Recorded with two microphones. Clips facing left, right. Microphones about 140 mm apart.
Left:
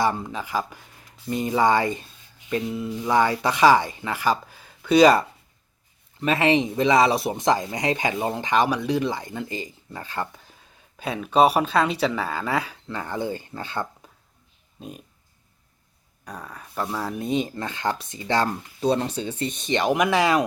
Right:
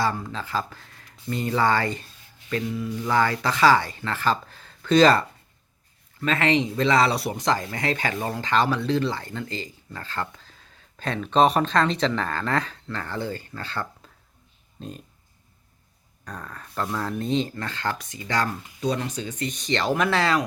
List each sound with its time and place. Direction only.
0.0 s speech: 20° left (ahead or behind)
16.2 s speech: 10° left (ahead or behind)